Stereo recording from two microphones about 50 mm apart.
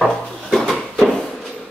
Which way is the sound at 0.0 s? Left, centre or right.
Centre.